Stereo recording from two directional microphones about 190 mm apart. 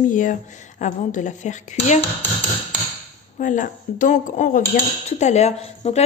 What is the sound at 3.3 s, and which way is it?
A woman's voice, 45° left (ahead or behind).